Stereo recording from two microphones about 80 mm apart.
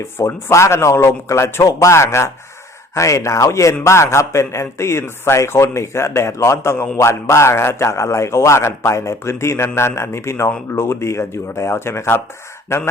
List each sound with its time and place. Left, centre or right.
0.2 s a man's voice: left